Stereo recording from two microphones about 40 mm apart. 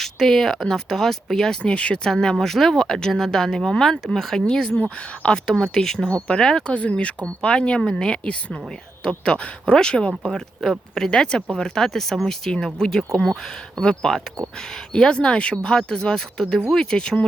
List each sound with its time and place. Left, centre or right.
0.0 s speech: centre
1.6 s a woman's voice: left
2.0 s speech: centre
6.7 s a woman's voice: left